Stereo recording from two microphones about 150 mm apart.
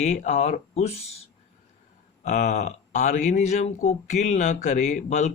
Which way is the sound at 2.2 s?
55° left (ahead or behind).